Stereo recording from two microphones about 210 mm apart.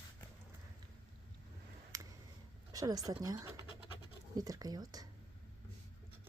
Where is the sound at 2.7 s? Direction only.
15° right (ahead or behind).